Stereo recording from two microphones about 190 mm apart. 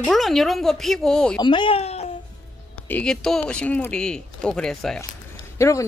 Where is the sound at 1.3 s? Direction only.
25° left (ahead or behind).